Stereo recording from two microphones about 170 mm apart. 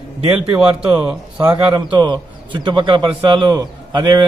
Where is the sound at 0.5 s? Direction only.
5° right (ahead or behind).